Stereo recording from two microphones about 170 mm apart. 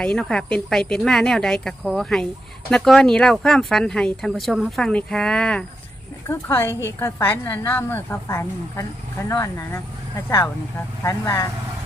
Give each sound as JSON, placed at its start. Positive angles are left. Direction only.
{"t": 0.0, "sound": "speech", "side_deg": 5}
{"t": 6.2, "sound": "a woman's voice", "side_deg": 15}